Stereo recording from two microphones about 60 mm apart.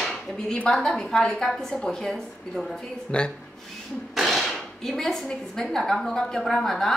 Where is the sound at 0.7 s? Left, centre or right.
Centre.